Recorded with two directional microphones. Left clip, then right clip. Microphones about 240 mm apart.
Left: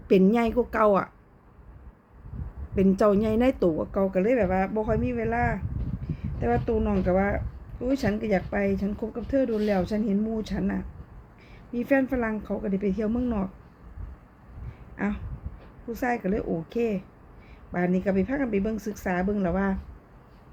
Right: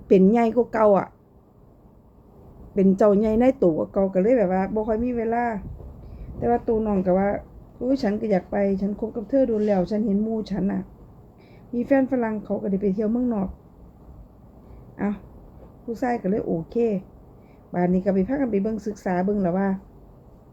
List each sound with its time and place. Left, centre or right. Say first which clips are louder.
0.1 s speech: right 4 dB; centre
2.7 s speech: right 4 dB; centre
14.9 s speech: right 2 dB; centre